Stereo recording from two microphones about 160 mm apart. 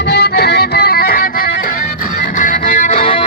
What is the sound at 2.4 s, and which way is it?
Music, 55° left (ahead or behind).